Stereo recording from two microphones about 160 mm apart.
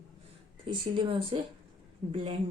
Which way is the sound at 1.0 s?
30° right (ahead or behind).